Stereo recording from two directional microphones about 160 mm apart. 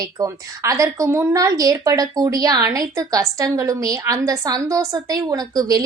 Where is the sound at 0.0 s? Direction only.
20° right (ahead or behind).